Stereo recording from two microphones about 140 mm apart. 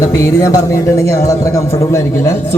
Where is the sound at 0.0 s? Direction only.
20° left (ahead or behind).